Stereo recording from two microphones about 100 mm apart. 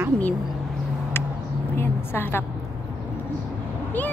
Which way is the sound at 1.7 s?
25° left (ahead or behind).